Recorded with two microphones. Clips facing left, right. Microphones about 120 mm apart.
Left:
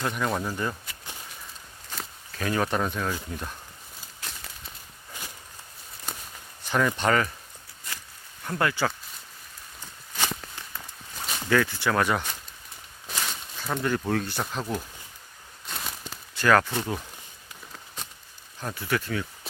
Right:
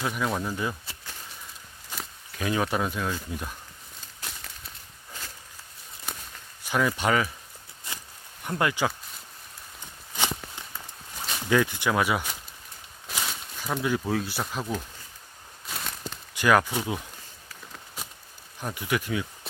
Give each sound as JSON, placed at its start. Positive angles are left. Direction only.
{"t": 0.0, "sound": "speech", "side_deg": 0}
{"t": 1.9, "sound": "walk", "side_deg": -10}
{"t": 3.3, "sound": "speech", "side_deg": -10}
{"t": 4.2, "sound": "a sound", "side_deg": -5}
{"t": 6.6, "sound": "speech", "side_deg": -5}
{"t": 8.4, "sound": "speech", "side_deg": -20}
{"t": 10.2, "sound": "walk", "side_deg": -15}
{"t": 11.4, "sound": "speech", "side_deg": -15}
{"t": 15.6, "sound": "a sound", "side_deg": 0}
{"t": 16.3, "sound": "speech", "side_deg": -15}
{"t": 17.7, "sound": "a sound", "side_deg": -5}
{"t": 18.6, "sound": "speech", "side_deg": -15}